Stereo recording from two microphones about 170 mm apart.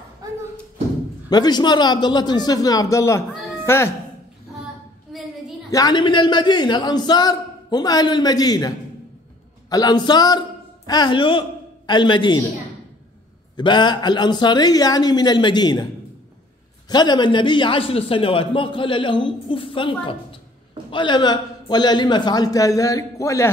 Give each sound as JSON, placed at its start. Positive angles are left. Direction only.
{"t": 1.3, "sound": "a man's voice", "side_deg": 25}
{"t": 5.7, "sound": "a man's voice", "side_deg": 20}
{"t": 13.6, "sound": "a man's voice", "side_deg": 25}
{"t": 16.9, "sound": "a man's voice", "side_deg": 25}